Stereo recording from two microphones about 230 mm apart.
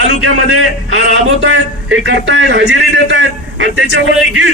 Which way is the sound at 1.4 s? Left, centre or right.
Right.